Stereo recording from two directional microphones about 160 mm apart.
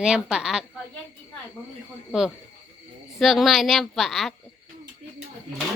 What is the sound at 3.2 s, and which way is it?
A woman's voice, centre (ahead or behind).